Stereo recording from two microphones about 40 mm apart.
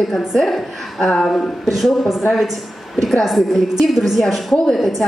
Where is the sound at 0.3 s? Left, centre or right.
Centre.